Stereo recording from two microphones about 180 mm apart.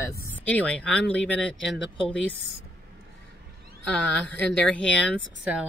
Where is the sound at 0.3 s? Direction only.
10° left (ahead or behind).